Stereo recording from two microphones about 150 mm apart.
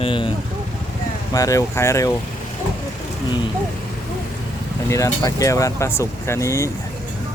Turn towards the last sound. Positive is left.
turn(degrees=20)  # may be behind; listen again after turning